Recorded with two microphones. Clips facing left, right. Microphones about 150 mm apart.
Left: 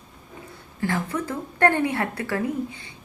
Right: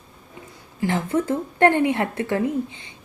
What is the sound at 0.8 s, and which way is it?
A woman's voice, 25° right (ahead or behind).